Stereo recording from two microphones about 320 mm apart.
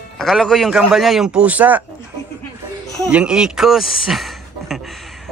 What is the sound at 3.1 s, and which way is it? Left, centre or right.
Speech, centre.